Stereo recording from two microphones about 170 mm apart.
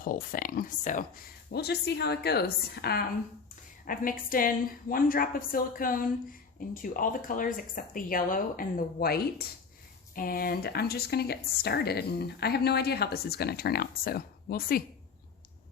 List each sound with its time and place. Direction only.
0.0 s speech: 55° left (ahead or behind)
3.8 s speech: 55° left (ahead or behind)